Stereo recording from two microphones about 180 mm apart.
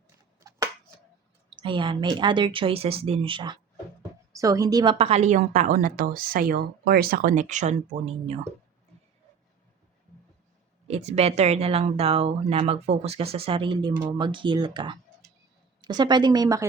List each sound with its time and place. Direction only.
1.5 s a woman's voice: 25° right (ahead or behind)
10.8 s speech: 35° right (ahead or behind); by 16.6 s 20° right (ahead or behind)